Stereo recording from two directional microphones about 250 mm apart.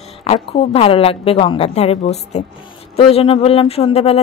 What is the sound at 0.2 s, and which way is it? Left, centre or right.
Speech, left.